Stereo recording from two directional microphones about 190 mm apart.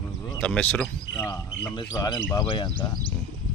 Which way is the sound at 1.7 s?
20° left (ahead or behind).